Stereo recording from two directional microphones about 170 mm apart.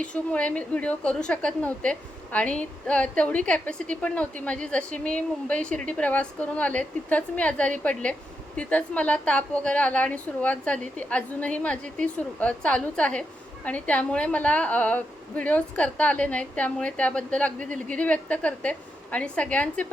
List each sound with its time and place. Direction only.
0.0 s a woman's voice: 5° left (ahead or behind)